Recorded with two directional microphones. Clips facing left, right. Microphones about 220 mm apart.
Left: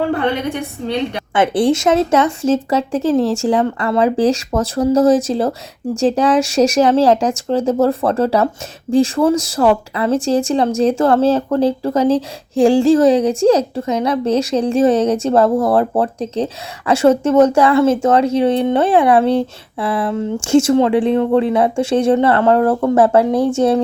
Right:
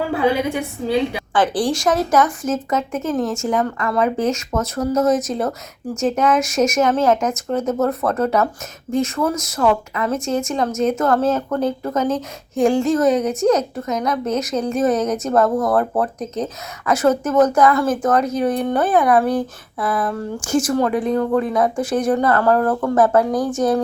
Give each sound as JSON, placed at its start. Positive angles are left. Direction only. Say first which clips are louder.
{"t": 0.0, "sound": "a woman's voice", "louder": "left 1 dB", "side_deg": -5}
{"t": 1.3, "sound": "speech", "louder": "left 6 dB", "side_deg": 25}